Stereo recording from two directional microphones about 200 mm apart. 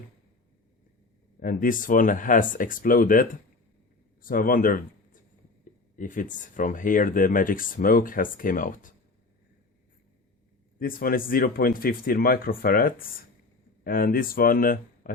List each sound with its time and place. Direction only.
1.4 s speech: 45° left (ahead or behind)
10.8 s speech: 45° left (ahead or behind)